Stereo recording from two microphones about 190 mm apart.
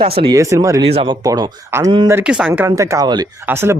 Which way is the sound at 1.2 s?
20° right (ahead or behind).